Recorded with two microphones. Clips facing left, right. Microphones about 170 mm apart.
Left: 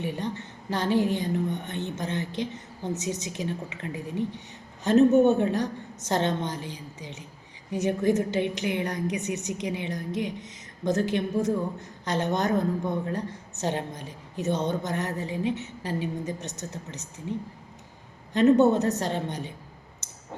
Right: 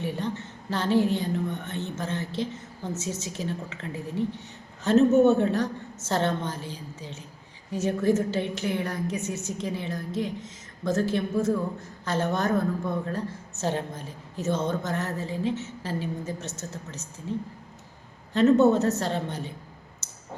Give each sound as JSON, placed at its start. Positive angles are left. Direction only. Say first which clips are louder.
{"t": 0.0, "sound": "a woman's voice", "louder": "right 1 dB", "side_deg": 15}
{"t": 18.3, "sound": "a woman's voice", "louder": "even", "side_deg": 15}
{"t": 20.0, "sound": "a sound", "louder": "even", "side_deg": 15}